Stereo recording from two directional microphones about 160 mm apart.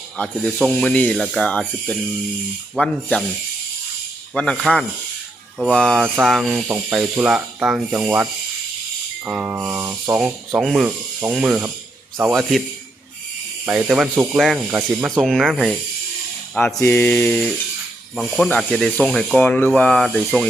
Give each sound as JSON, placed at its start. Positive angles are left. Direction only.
{"t": 0.2, "sound": "speech", "side_deg": 10}
{"t": 4.4, "sound": "speech", "side_deg": 5}
{"t": 13.7, "sound": "speech", "side_deg": -5}
{"t": 16.7, "sound": "speech", "side_deg": 15}